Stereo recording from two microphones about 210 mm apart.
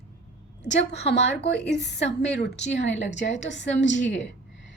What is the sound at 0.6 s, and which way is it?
A woman's voice, 55° left (ahead or behind).